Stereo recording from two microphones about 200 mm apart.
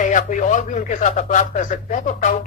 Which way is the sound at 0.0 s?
40° left (ahead or behind).